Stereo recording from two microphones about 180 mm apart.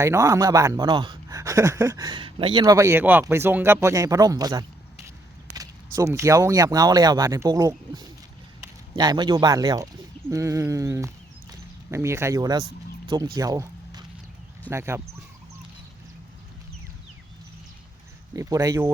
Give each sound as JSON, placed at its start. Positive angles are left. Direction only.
{"t": 0.0, "sound": "speech", "side_deg": -15}
{"t": 13.3, "sound": "a sound", "side_deg": -20}
{"t": 14.7, "sound": "speech", "side_deg": -15}
{"t": 18.3, "sound": "speech", "side_deg": -20}